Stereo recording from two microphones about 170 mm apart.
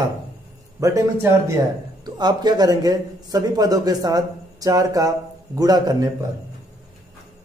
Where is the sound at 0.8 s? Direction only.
20° right (ahead or behind).